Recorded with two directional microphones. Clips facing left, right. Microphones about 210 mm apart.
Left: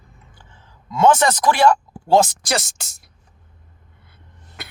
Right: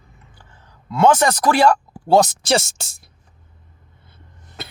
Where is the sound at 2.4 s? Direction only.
25° right (ahead or behind).